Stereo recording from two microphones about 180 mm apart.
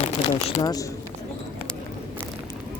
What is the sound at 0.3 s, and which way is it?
Speech, 20° left (ahead or behind).